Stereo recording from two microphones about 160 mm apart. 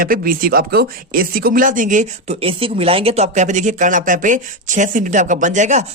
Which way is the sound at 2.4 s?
35° right (ahead or behind).